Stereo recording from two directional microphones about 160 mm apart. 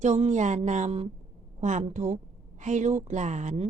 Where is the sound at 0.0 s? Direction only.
45° right (ahead or behind).